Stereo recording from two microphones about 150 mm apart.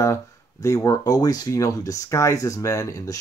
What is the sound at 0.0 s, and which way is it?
Speech, 20° left (ahead or behind).